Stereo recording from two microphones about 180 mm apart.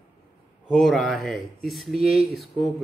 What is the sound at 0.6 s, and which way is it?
Speech, centre (ahead or behind).